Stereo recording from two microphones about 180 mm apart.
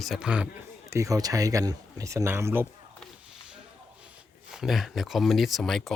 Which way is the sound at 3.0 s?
5° right (ahead or behind).